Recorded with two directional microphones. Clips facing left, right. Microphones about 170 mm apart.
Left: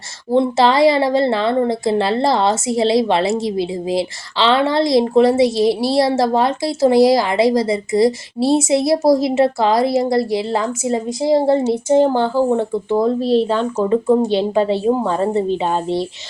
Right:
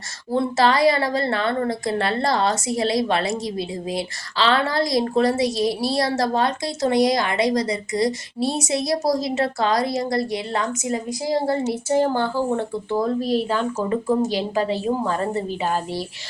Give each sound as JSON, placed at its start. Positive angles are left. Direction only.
{"t": 0.3, "sound": "a woman's voice", "side_deg": 25}